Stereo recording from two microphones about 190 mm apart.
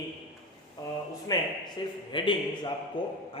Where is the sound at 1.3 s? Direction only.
20° left (ahead or behind).